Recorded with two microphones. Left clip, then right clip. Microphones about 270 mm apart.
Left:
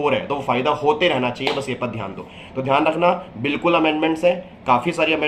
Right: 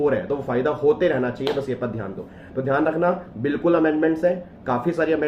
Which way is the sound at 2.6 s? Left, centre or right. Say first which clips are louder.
Left 3 dB; left.